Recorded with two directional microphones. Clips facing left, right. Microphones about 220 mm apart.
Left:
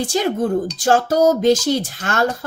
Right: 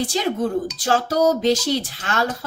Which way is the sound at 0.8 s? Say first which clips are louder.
Left 4 dB; 45° left (ahead or behind).